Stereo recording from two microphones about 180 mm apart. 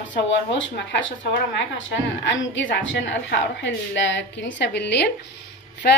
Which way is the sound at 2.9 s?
90° left.